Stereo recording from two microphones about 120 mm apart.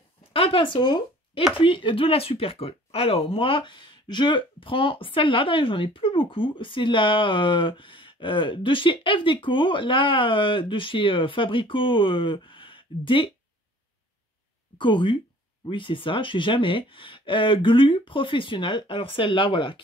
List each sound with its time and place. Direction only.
0.3 s speech: 50° left (ahead or behind)
14.8 s speech: 45° left (ahead or behind)